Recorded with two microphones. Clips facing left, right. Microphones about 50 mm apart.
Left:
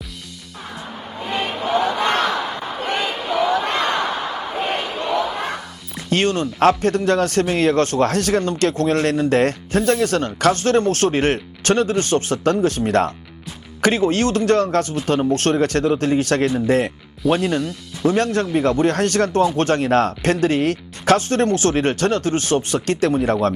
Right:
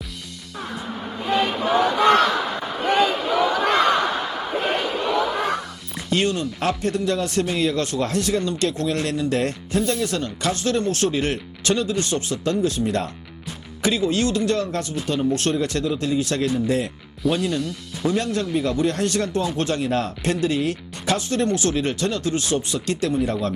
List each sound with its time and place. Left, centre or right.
1.2 s a sound: centre
4.6 s battle cry: centre
6.1 s speech: left
13.8 s speech: left